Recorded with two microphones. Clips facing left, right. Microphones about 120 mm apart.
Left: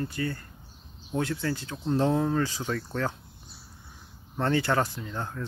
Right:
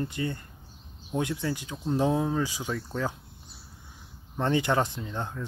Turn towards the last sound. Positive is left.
turn(degrees=-15)  # may be behind; listen again after turning